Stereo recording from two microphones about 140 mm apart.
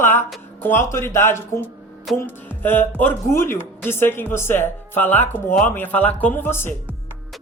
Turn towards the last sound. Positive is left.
turn(degrees=15)  # may be behind; listen again after turning